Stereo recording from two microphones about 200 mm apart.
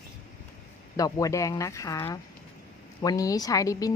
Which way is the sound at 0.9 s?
15° left (ahead or behind).